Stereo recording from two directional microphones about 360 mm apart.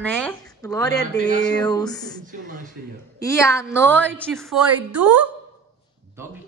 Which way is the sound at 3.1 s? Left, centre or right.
Centre.